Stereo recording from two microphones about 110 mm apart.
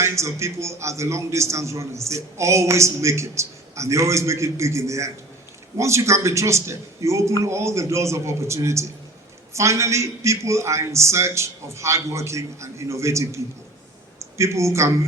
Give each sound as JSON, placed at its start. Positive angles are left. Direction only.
{"t": 0.0, "sound": "a man's voice", "side_deg": -25}